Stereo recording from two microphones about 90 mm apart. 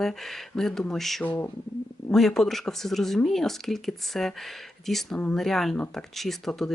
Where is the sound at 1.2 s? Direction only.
25° left (ahead or behind).